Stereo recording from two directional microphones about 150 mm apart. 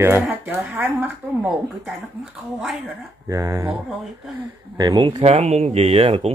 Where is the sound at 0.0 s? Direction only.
15° right (ahead or behind).